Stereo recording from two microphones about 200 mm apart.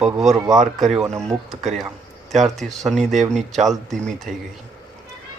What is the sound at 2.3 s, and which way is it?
Speech, centre (ahead or behind).